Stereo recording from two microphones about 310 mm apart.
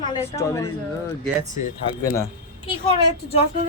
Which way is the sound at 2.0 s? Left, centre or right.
Centre.